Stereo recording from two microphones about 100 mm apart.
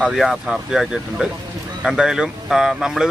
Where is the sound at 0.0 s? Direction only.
5° right (ahead or behind).